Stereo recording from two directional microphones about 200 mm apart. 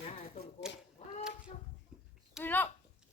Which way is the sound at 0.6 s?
5° right (ahead or behind).